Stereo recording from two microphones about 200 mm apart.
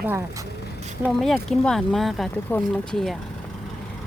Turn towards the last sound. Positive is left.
turn(degrees=0)  # may be behind; listen again after turning